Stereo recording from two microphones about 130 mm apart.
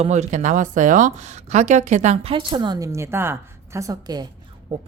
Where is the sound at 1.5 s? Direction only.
60° right (ahead or behind).